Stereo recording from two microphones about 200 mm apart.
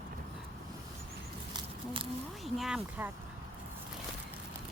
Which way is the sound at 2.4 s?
Centre (ahead or behind).